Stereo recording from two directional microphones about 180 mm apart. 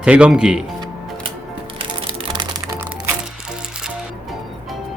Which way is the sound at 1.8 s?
30° right (ahead or behind).